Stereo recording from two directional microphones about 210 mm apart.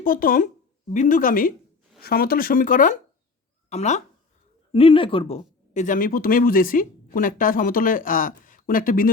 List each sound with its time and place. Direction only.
0.0 s speech: 40° left (ahead or behind)